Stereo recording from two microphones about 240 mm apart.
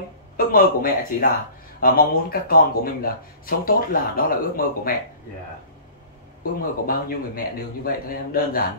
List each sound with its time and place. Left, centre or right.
0.5 s speech: left
6.6 s speech: left